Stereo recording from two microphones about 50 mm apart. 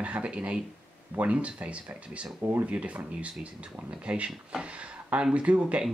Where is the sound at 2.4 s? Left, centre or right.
Right.